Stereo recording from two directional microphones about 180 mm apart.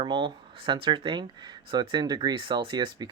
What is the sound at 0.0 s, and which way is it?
Speech, 25° right (ahead or behind).